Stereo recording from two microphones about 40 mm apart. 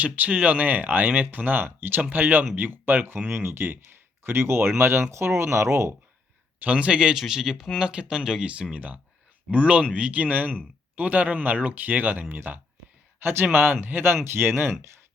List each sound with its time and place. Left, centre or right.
0.0 s speech: right
3.3 s speech: right
6.6 s speech: right
7.2 s speech: centre
7.8 s speech: right
8.4 s speech: right
13.8 s speech: right
14.3 s speech: right